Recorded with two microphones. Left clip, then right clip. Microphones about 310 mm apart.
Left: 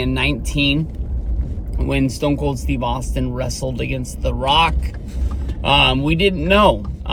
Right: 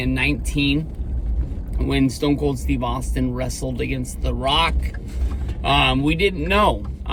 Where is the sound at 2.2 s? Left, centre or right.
Centre.